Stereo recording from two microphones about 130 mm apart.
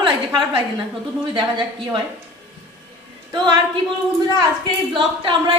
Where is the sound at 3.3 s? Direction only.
35° right (ahead or behind).